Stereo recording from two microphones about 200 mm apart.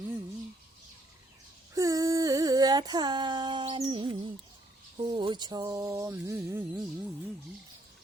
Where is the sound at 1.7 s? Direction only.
15° right (ahead or behind).